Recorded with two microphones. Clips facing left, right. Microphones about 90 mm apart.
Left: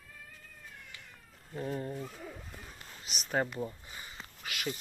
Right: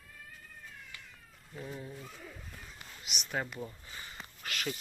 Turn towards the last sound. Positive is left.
turn(degrees=5)  # may be behind; listen again after turning